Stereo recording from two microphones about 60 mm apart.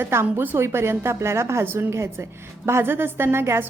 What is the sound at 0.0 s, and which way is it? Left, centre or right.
A woman's voice, right.